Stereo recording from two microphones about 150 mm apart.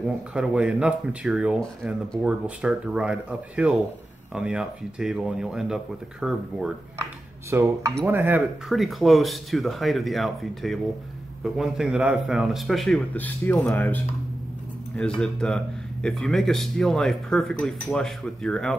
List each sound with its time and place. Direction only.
0.0 s speech: 5° right (ahead or behind)
7.4 s speech: 20° right (ahead or behind)
8.6 s speech: centre (ahead or behind)
15.1 s speech: 5° left (ahead or behind)